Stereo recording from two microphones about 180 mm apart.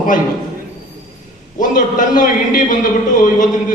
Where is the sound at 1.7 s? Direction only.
45° left (ahead or behind).